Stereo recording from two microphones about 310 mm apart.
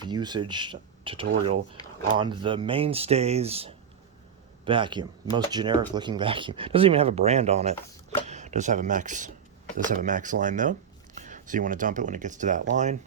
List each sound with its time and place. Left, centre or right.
0.0 s speech: centre